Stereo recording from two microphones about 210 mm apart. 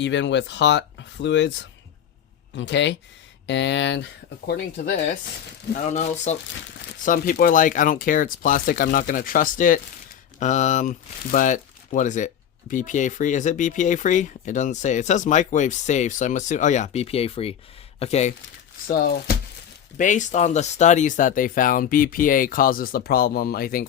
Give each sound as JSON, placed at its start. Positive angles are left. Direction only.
{"t": 0.0, "sound": "speech", "side_deg": 60}
{"t": 4.4, "sound": "speech", "side_deg": 35}
{"t": 18.9, "sound": "speech", "side_deg": 45}